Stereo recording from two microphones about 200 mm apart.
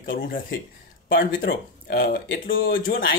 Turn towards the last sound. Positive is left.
turn(degrees=75)  # may be behind; listen again after turning